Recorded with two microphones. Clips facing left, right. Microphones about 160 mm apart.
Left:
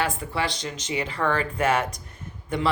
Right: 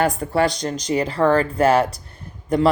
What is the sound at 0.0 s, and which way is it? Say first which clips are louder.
Speech: right 8 dB; 40° right (ahead or behind).